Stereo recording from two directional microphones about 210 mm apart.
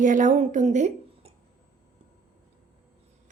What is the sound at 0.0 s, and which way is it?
A woman's voice, 40° right (ahead or behind).